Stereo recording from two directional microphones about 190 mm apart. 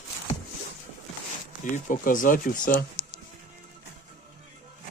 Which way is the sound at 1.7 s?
40° left (ahead or behind).